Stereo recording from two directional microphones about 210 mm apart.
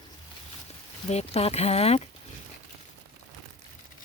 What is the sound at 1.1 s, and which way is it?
Speech, 30° left (ahead or behind).